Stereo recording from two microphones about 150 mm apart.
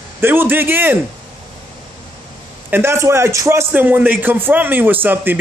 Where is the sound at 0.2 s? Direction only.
15° right (ahead or behind).